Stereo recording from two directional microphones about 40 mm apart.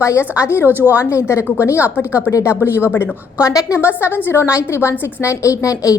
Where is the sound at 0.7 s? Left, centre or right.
Right.